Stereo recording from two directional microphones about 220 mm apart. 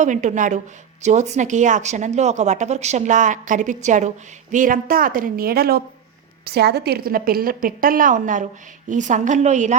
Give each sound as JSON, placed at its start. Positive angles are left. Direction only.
{"t": 0.0, "sound": "speech", "side_deg": -35}